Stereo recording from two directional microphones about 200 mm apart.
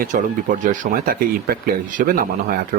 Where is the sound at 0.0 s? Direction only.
40° right (ahead or behind).